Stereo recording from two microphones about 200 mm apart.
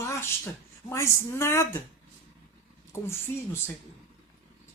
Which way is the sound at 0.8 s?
10° left (ahead or behind).